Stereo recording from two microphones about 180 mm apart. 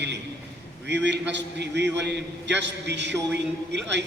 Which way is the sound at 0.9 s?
75° right (ahead or behind).